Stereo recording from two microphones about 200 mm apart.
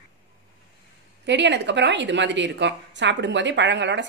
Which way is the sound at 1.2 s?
60° right (ahead or behind).